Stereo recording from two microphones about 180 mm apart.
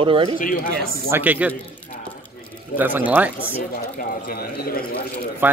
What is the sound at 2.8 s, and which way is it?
Speech, 10° right (ahead or behind).